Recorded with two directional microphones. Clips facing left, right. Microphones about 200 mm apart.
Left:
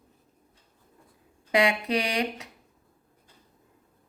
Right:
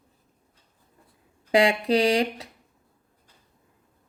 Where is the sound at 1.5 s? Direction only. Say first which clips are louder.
Right 4 dB; 30° right (ahead or behind).